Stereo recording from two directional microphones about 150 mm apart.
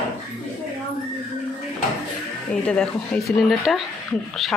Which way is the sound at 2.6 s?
5° left (ahead or behind).